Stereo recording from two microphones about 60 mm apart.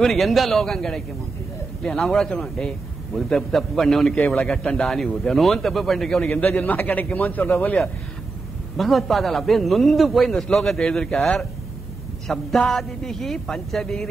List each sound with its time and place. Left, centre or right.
0.0 s a man's voice: centre
6.3 s a man's voice: left
8.7 s a man's voice: centre